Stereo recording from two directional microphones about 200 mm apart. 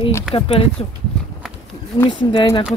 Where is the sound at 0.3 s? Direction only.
30° left (ahead or behind).